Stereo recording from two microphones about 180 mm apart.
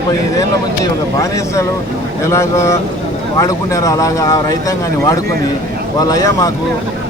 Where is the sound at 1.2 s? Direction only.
15° left (ahead or behind).